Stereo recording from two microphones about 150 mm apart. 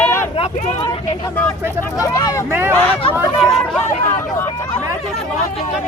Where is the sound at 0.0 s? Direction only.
15° left (ahead or behind).